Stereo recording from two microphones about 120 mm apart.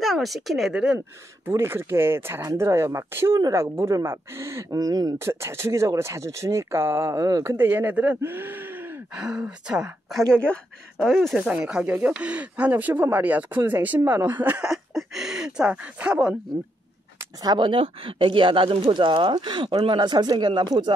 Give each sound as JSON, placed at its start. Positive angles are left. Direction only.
{"t": 0.0, "sound": "speech", "side_deg": 0}
{"t": 0.9, "sound": "speech", "side_deg": -20}
{"t": 5.3, "sound": "speech", "side_deg": -20}
{"t": 7.5, "sound": "speech", "side_deg": -15}
{"t": 10.0, "sound": "speech", "side_deg": 5}
{"t": 11.3, "sound": "speech", "side_deg": -10}
{"t": 17.2, "sound": "speech", "side_deg": -35}